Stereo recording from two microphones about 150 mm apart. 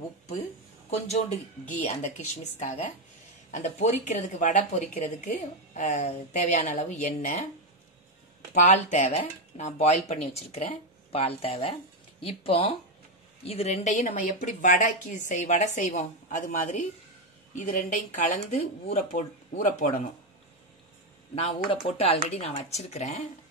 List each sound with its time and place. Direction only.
0.8 s a man's voice: 45° left (ahead or behind)
8.6 s speech: 55° left (ahead or behind)
21.4 s speech: 40° left (ahead or behind)